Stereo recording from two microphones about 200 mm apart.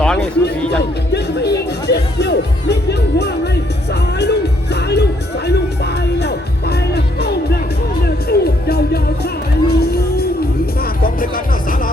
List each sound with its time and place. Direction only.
0.2 s music: 55° left (ahead or behind)